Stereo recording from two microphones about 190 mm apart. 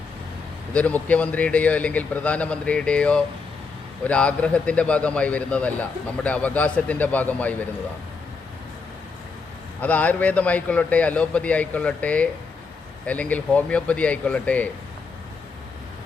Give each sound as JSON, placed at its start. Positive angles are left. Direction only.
{"t": 0.7, "sound": "speech", "side_deg": 5}
{"t": 9.8, "sound": "speech", "side_deg": 10}